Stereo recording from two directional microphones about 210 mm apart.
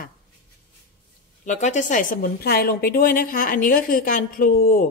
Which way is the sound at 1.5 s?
35° left (ahead or behind).